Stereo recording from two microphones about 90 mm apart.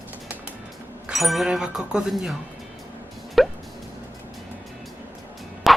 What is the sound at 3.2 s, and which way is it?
Music, centre (ahead or behind).